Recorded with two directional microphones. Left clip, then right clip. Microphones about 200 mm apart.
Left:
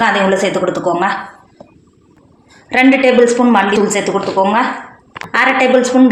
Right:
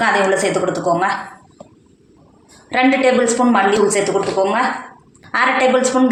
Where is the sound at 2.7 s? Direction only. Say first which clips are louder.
Left 4 dB; 45° left (ahead or behind).